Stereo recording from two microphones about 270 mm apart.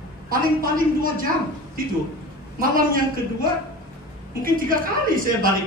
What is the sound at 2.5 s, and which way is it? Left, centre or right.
A man's voice, right.